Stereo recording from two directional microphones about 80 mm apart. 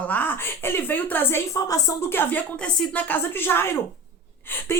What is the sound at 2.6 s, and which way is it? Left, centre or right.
A woman's voice, centre.